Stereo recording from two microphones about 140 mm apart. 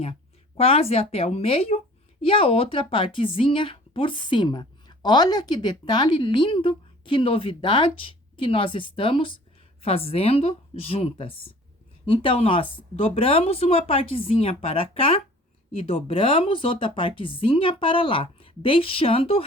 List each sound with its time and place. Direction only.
0.0 s a woman's voice: 45° left (ahead or behind)